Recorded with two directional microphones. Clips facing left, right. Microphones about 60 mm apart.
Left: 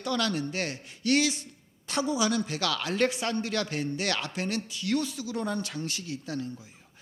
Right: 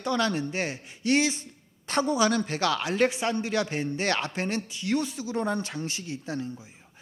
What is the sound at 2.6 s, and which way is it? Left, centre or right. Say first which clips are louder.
Speech: right 4 dB; right.